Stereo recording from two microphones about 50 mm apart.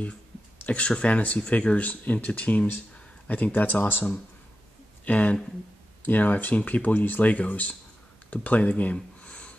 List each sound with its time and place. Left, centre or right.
0.7 s speech: left
5.0 s speech: left